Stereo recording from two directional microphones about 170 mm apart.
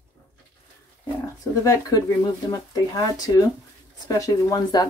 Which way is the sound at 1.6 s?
20° left (ahead or behind).